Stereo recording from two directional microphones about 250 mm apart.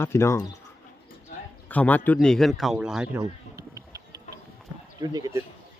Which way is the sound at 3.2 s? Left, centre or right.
Centre.